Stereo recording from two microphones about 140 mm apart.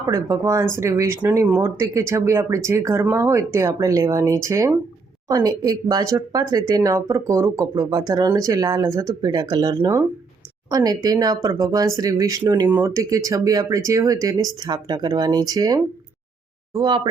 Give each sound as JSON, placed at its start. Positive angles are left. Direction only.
{"t": 0.1, "sound": "speech", "side_deg": -25}